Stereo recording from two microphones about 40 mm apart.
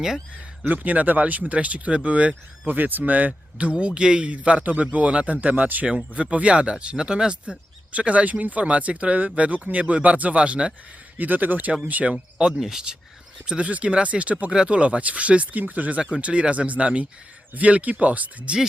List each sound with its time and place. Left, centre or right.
0.7 s speech: right
2.6 s speech: right
3.0 s speech: right
6.3 s speech: right
7.9 s speech: right
11.2 s speech: right
12.0 s speech: right
12.5 s speech: centre
13.4 s speech: right
14.5 s speech: right
16.1 s speech: right